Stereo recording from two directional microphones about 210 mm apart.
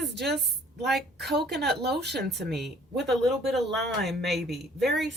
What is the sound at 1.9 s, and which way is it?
Speech, 50° right (ahead or behind).